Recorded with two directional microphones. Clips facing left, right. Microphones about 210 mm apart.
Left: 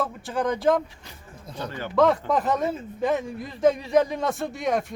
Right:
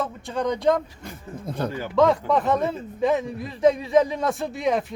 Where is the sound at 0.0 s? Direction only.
5° left (ahead or behind).